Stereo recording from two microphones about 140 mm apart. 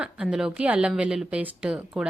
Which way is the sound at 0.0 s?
5° right (ahead or behind).